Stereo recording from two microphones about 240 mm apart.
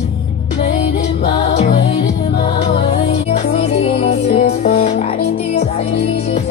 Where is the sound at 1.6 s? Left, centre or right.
Left.